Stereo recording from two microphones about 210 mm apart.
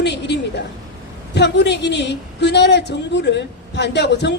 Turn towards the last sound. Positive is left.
turn(degrees=55)  # may be behind; listen again after turning